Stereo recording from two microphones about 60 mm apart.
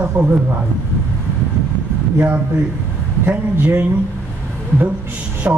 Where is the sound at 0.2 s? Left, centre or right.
Right.